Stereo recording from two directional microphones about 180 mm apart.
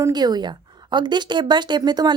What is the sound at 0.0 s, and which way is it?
A woman's voice, 20° right (ahead or behind).